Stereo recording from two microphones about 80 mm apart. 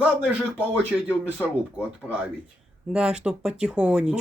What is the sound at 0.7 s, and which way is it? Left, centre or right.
Speech, centre.